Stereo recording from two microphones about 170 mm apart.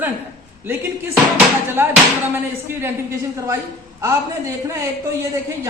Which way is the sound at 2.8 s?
15° right (ahead or behind).